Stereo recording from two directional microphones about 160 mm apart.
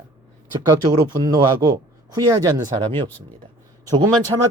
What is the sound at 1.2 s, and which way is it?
Speech, 25° right (ahead or behind).